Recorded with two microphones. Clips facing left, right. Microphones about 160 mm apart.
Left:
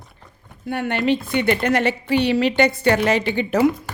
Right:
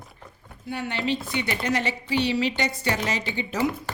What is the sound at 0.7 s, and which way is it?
A woman's voice, 55° left (ahead or behind).